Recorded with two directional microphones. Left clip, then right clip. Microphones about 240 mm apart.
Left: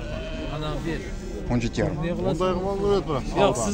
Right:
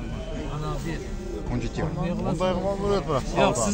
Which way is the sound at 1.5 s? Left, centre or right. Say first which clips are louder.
Left 6 dB; left.